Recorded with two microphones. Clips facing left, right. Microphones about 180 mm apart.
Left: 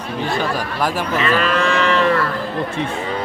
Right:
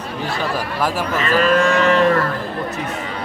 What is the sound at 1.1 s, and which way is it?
Moo, 45° right (ahead or behind).